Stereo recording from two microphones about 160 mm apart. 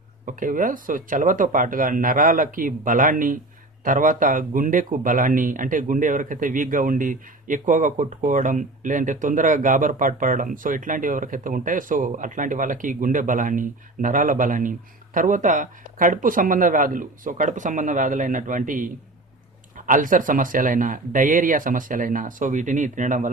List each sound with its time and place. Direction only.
0.3 s speech: 55° right (ahead or behind)